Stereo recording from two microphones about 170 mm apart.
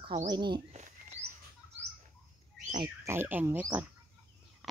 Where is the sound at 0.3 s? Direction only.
25° right (ahead or behind).